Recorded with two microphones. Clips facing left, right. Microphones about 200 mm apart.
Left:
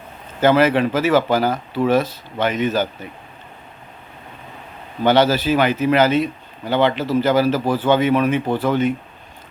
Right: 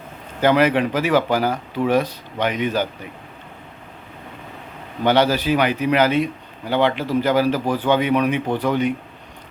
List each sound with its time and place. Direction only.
0.3 s a man's voice: 15° right (ahead or behind)
5.0 s a man's voice: 15° right (ahead or behind)